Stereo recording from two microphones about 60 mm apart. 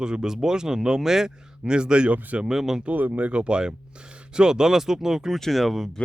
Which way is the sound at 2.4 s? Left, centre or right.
Centre.